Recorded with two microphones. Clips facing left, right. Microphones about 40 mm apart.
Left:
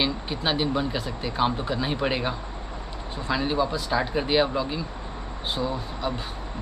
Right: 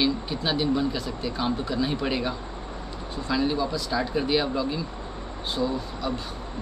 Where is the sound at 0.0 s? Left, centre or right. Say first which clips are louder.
Right 1 dB; left.